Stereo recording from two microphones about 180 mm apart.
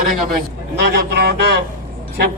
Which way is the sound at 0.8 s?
65° right (ahead or behind).